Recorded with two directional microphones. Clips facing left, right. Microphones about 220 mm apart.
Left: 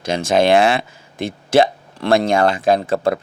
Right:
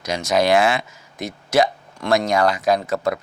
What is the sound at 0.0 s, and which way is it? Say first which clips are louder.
Speech: left 4 dB; 30° left (ahead or behind).